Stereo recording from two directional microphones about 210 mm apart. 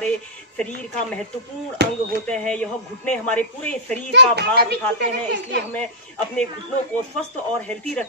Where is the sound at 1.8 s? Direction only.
50° right (ahead or behind).